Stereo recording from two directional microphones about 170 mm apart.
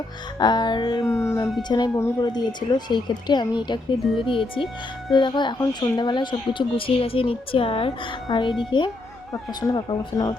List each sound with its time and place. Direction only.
0.3 s speech: 25° left (ahead or behind)
1.2 s speech: 15° left (ahead or behind)